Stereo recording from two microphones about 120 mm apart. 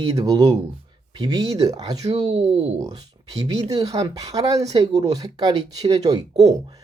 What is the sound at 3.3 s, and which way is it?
Speech, 30° right (ahead or behind).